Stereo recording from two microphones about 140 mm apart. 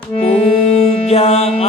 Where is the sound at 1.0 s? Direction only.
45° left (ahead or behind).